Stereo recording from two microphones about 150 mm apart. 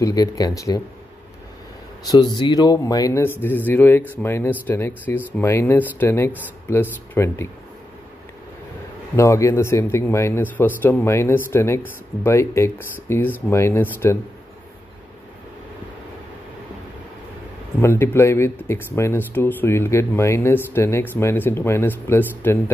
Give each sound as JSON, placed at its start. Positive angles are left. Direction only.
{"t": 0.0, "sound": "a man's voice", "side_deg": 25}
{"t": 2.0, "sound": "a man's voice", "side_deg": 30}
{"t": 9.1, "sound": "speech", "side_deg": 20}
{"t": 17.7, "sound": "speech", "side_deg": 15}